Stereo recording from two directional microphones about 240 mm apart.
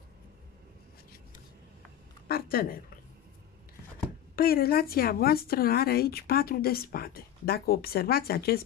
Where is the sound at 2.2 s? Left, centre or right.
Left.